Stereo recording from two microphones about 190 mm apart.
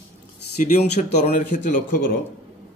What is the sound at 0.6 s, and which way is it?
Speech, 40° left (ahead or behind).